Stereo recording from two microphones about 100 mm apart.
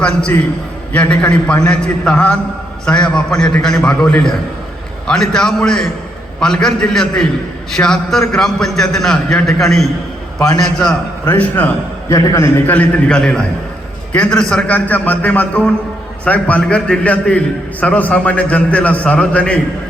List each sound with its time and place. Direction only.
0.0 s a man's voice: 10° left (ahead or behind)
11.3 s a man's voice: 20° left (ahead or behind)
12.1 s a man's voice: 30° left (ahead or behind)
12.6 s a man's voice: 15° left (ahead or behind)